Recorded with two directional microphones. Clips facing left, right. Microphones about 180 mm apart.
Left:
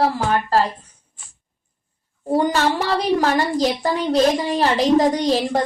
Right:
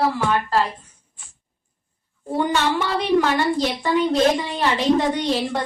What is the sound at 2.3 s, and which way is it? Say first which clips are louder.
Speech: left 3 dB; 35° left (ahead or behind).